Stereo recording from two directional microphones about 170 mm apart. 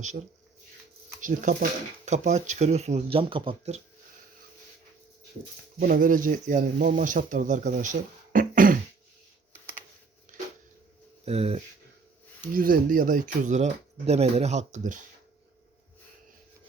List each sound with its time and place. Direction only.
1.2 s speech: 50° right (ahead or behind); by 3.8 s 30° right (ahead or behind)
5.8 s speech: 55° right (ahead or behind)
11.3 s speech: 35° right (ahead or behind)
12.4 s speech: 55° right (ahead or behind)